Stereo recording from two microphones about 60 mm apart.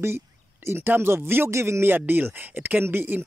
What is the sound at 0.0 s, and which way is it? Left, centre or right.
Speech, right.